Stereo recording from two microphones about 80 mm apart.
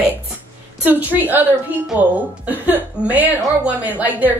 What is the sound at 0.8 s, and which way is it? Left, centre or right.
A woman's voice, right.